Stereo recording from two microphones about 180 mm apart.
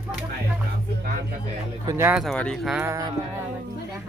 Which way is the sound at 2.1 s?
Centre (ahead or behind).